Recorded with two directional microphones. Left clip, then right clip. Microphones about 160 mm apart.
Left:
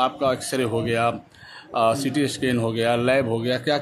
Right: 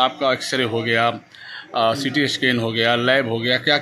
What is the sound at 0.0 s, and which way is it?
Speech, 5° left (ahead or behind).